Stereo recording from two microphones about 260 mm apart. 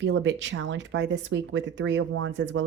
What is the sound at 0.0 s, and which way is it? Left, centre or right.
Speech, right.